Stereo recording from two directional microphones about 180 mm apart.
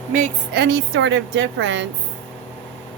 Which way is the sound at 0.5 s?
70° right (ahead or behind).